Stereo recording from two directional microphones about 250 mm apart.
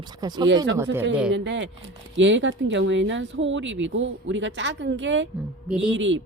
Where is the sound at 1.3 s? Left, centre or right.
Right.